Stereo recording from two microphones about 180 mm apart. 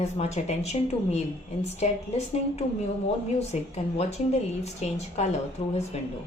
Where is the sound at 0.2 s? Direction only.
35° left (ahead or behind).